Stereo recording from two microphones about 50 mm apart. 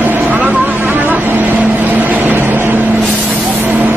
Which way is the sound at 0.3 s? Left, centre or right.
Right.